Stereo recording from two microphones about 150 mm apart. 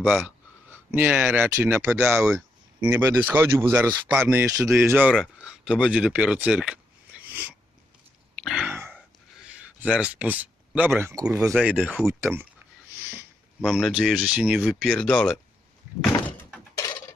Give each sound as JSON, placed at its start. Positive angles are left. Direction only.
{"t": 0.0, "sound": "speech", "side_deg": 0}
{"t": 5.1, "sound": "speech", "side_deg": -5}
{"t": 8.4, "sound": "throat clearing", "side_deg": 0}
{"t": 9.8, "sound": "speech", "side_deg": -5}
{"t": 11.3, "sound": "speech", "side_deg": -5}
{"t": 12.0, "sound": "speech", "side_deg": -15}
{"t": 13.7, "sound": "speech", "side_deg": 5}
{"t": 16.7, "sound": "a sound", "side_deg": 20}